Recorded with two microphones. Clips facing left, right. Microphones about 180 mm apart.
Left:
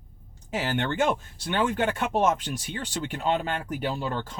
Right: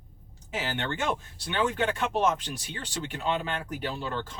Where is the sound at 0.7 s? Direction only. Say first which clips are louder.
Left 6 dB; 50° left (ahead or behind).